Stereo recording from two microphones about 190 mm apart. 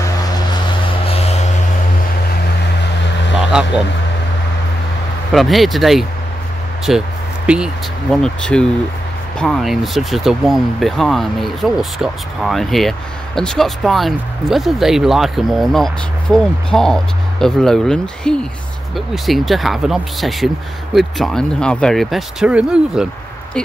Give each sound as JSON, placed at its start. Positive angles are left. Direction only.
{"t": 1.0, "sound": "a sound", "side_deg": 30}
{"t": 3.5, "sound": "speech", "side_deg": -5}
{"t": 5.3, "sound": "speech", "side_deg": 0}